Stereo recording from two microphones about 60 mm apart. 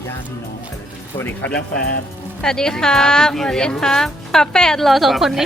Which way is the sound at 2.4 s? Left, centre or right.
Centre.